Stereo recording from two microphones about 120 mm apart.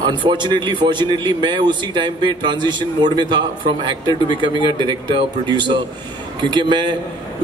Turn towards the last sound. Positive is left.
turn(degrees=-40)  # may be behind; listen again after turning